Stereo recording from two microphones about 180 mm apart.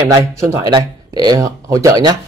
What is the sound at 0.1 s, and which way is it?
Speech, 15° right (ahead or behind).